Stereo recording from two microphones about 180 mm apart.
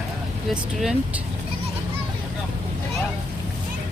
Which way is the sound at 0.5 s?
5° right (ahead or behind).